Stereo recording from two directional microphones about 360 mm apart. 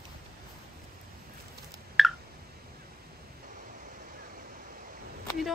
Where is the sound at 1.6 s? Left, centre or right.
Centre.